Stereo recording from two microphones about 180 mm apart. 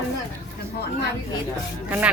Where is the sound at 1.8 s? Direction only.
10° right (ahead or behind).